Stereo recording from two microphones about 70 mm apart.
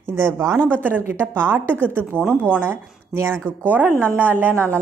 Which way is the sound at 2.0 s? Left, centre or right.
Left.